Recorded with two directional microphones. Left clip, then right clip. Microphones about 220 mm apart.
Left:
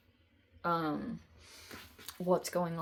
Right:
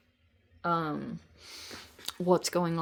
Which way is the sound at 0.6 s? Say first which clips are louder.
Right 3 dB; 20° right (ahead or behind).